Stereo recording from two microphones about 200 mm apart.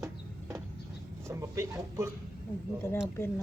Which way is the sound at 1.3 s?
15° right (ahead or behind).